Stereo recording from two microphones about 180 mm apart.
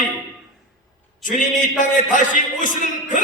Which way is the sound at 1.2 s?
45° left (ahead or behind).